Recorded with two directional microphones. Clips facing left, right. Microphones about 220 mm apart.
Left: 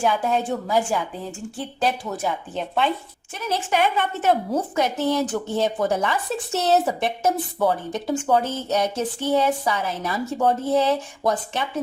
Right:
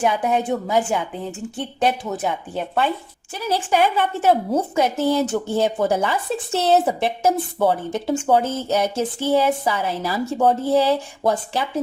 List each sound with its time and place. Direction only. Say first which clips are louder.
0.0 s speech: right 2 dB; 20° right (ahead or behind)
2.6 s speech: right 1 dB; 5° right (ahead or behind)
3.3 s speech: right 3 dB; 35° right (ahead or behind)